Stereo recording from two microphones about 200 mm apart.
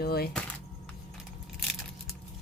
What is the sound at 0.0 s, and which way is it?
Speech, 50° left (ahead or behind).